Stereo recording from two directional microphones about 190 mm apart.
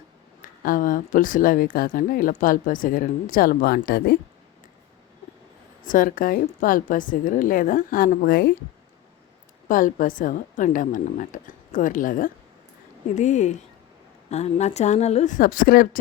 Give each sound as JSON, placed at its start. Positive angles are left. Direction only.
{"t": 0.6, "sound": "speech", "side_deg": 45}
{"t": 5.8, "sound": "speech", "side_deg": 45}
{"t": 9.6, "sound": "a woman's voice", "side_deg": 45}